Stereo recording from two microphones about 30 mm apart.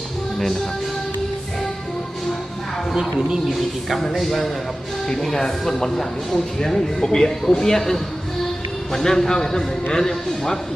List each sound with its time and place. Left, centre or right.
3.5 s a man's voice: centre